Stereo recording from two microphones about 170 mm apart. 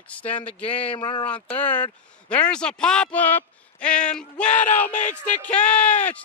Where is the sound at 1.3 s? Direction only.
10° left (ahead or behind).